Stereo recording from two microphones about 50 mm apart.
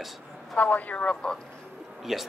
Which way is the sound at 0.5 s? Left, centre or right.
Left.